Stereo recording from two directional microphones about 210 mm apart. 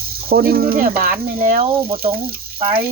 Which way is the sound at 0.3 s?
45° right (ahead or behind).